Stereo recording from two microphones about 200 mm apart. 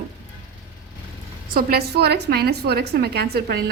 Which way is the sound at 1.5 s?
50° right (ahead or behind).